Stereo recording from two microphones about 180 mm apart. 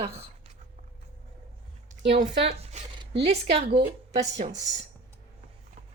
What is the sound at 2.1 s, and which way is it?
Speech, 35° right (ahead or behind).